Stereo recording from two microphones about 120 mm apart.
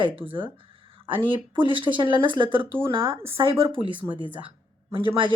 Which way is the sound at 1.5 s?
45° right (ahead or behind).